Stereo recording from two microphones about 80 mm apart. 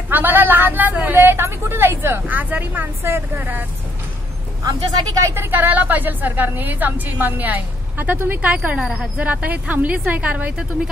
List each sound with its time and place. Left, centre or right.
0.1 s a woman's voice: right
4.6 s speech: right
5.3 s a woman's voice: right; by 9.1 s centre
9.2 s a woman's voice: centre